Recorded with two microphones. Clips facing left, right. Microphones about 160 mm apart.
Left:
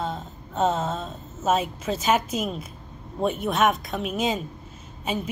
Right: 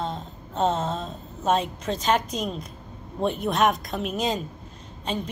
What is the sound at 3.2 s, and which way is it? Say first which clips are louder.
A woman's voice: even; centre (ahead or behind).